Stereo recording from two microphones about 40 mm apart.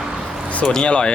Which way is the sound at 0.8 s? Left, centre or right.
Left.